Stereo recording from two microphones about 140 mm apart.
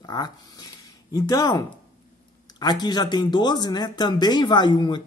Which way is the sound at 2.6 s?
30° left (ahead or behind).